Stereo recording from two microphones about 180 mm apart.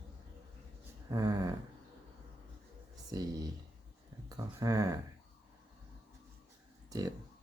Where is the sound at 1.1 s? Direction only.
20° right (ahead or behind).